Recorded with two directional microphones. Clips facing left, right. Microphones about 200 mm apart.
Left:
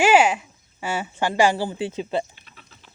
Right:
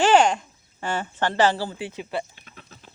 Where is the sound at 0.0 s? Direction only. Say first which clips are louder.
Left 1 dB; 10° left (ahead or behind); by 2.2 s 25° left (ahead or behind).